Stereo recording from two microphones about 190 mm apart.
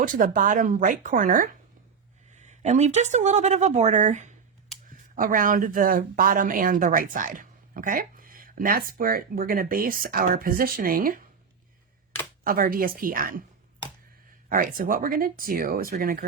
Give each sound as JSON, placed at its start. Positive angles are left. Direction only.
{"t": 0.0, "sound": "speech", "side_deg": -45}
{"t": 12.5, "sound": "speech", "side_deg": -50}
{"t": 14.5, "sound": "speech", "side_deg": -45}